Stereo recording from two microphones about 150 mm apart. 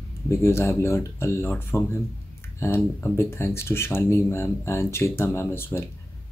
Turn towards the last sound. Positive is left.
turn(degrees=15)  # may be behind; listen again after turning